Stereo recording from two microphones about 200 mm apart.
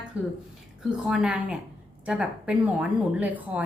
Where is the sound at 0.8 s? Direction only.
5° right (ahead or behind).